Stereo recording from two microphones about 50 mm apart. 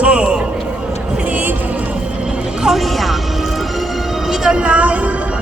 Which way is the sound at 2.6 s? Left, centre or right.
Centre.